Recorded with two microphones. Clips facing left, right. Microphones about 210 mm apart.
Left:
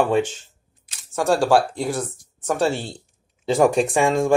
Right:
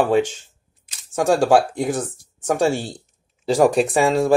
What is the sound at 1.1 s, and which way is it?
Speech, 15° right (ahead or behind).